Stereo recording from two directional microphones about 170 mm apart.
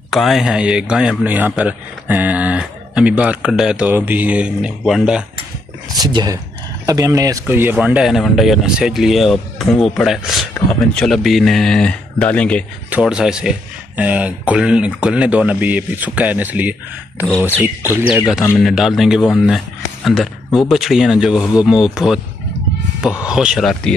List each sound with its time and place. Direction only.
0.1 s speech: centre (ahead or behind)
5.9 s speech: 25° right (ahead or behind); by 12.6 s 5° left (ahead or behind)
12.9 s speech: 5° right (ahead or behind)
23.2 s speech: 5° right (ahead or behind)